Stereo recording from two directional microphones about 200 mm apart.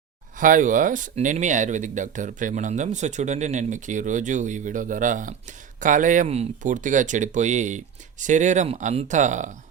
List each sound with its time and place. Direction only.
0.3 s speech: 40° right (ahead or behind)